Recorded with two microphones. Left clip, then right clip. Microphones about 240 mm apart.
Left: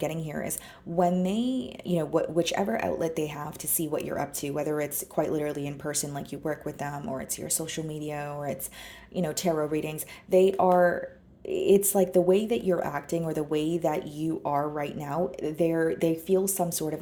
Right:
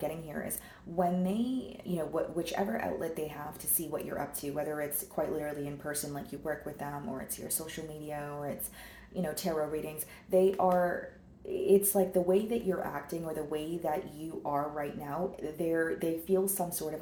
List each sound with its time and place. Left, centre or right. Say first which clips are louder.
0.0 s speech: left 5 dB; left